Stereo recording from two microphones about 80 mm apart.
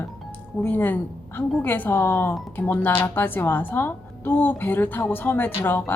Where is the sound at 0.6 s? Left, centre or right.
Left.